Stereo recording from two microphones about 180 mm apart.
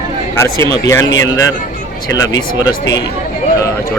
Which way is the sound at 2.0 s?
20° left (ahead or behind).